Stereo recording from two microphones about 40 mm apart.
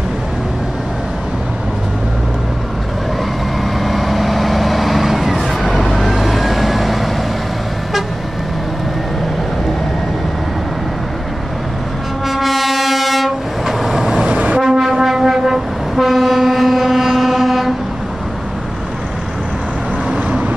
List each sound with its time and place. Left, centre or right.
3.8 s vehicle: centre
12.3 s train: centre
14.2 s train: right
14.6 s foghorn: centre
16.0 s train: centre